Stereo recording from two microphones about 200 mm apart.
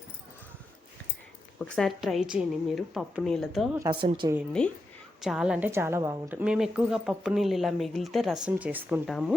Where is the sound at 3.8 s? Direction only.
25° right (ahead or behind).